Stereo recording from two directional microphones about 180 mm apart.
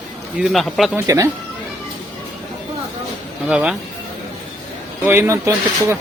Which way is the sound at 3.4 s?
5° right (ahead or behind).